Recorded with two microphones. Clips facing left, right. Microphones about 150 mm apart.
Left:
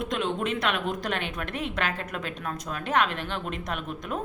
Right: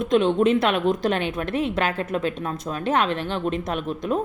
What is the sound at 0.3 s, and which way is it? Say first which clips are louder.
A woman's voice: right 9 dB; 35° right (ahead or behind).